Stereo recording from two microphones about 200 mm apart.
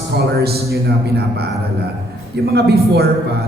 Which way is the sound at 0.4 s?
50° right (ahead or behind).